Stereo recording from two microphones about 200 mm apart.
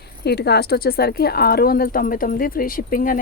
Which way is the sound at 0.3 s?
55° left (ahead or behind).